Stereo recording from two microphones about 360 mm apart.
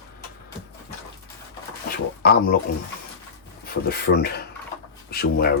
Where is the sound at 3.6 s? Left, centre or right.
Left.